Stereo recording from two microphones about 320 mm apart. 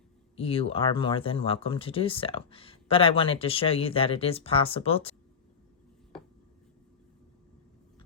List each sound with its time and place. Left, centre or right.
0.3 s speech: centre